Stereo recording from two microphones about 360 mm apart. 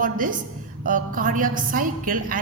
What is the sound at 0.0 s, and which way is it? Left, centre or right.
A woman's voice, right.